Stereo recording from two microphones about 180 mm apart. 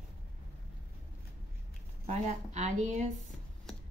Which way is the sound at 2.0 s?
40° right (ahead or behind).